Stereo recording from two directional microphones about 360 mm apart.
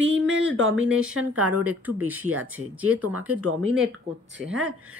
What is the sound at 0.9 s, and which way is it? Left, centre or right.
Speech, right.